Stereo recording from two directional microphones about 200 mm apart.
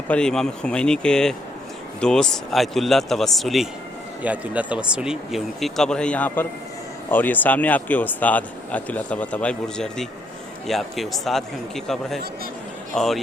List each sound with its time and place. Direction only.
0.1 s speech: 5° left (ahead or behind)